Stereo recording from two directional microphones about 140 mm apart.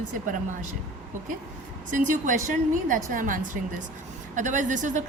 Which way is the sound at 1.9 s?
65° right (ahead or behind).